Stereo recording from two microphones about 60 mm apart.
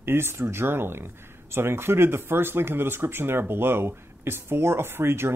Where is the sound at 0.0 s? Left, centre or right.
Right.